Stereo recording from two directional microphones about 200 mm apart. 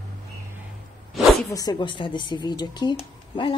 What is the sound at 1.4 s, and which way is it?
Speech, 20° left (ahead or behind).